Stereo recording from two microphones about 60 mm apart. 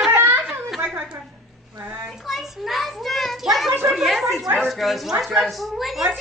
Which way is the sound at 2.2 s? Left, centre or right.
Centre.